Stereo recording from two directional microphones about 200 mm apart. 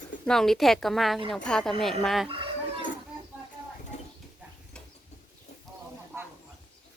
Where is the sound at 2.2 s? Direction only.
25° right (ahead or behind).